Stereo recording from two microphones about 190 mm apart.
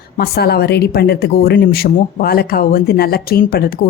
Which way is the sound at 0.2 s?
55° left (ahead or behind).